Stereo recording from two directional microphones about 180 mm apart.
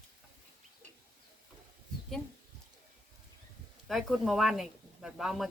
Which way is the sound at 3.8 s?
Centre (ahead or behind).